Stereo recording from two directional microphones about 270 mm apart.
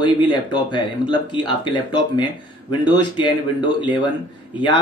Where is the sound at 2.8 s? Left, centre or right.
Centre.